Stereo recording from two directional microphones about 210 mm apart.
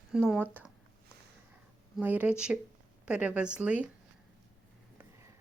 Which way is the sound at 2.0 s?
5° right (ahead or behind).